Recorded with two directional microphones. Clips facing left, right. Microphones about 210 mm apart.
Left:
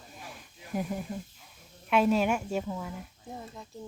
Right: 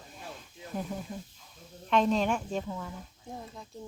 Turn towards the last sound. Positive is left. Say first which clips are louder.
# even
turn(degrees=0)  # may be behind; listen again after turning